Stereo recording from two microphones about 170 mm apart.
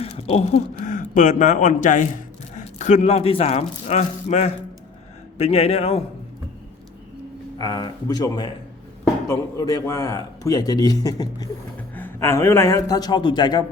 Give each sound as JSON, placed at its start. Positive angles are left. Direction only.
{"t": 0.0, "sound": "a man's voice", "side_deg": 35}
{"t": 7.6, "sound": "a man's voice", "side_deg": 25}